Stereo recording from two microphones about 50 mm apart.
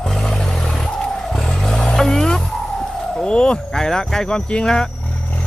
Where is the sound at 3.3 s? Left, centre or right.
Centre.